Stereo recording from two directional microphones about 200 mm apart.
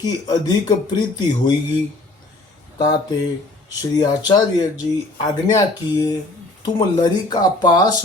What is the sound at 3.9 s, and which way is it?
Speech, 20° left (ahead or behind).